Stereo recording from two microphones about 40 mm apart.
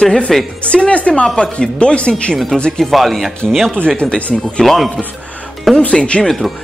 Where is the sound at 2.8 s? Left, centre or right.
Centre.